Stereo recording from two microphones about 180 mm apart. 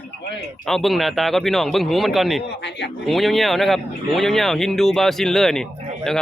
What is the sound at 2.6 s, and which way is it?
Speech, 70° left (ahead or behind).